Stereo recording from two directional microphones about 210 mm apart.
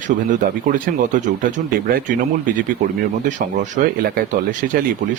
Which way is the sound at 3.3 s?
35° right (ahead or behind).